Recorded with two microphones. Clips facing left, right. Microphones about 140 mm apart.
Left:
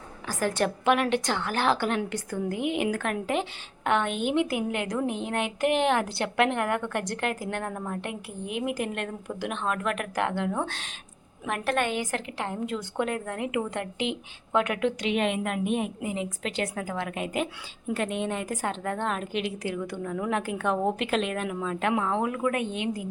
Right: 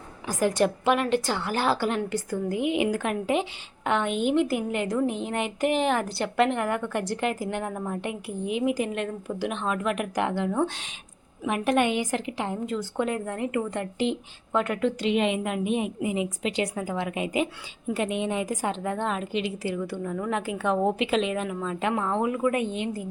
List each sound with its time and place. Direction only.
0.3 s a woman's voice: 15° right (ahead or behind)
2.5 s a woman's voice: 55° left (ahead or behind)
2.7 s a woman's voice: 10° right (ahead or behind)